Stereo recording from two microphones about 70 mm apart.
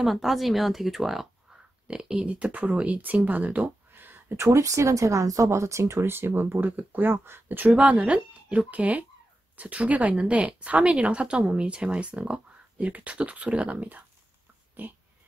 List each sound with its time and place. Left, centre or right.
0.0 s speech: centre; by 4.4 s right
4.4 s speech: right